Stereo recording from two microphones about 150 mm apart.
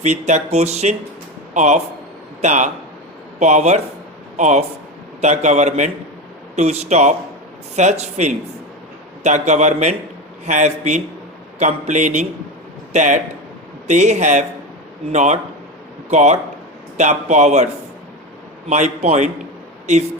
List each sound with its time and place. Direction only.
0.0 s a man's voice: 50° right (ahead or behind)
18.7 s speech: 50° right (ahead or behind)